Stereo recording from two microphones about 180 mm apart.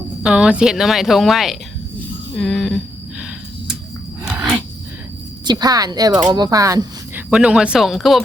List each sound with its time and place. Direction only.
0.2 s speech: 5° right (ahead or behind)
4.3 s a sound: 5° right (ahead or behind)
5.5 s a woman's voice: 20° right (ahead or behind)
7.3 s speech: 5° right (ahead or behind)